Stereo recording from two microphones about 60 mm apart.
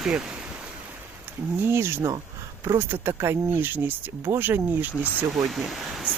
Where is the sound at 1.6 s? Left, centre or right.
Right.